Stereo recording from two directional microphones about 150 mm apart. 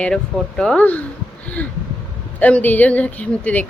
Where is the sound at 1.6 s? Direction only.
10° left (ahead or behind).